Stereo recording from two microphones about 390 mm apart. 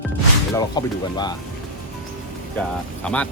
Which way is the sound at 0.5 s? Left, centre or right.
Centre.